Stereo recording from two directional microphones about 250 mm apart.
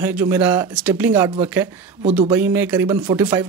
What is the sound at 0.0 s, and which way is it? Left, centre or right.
Speech, centre.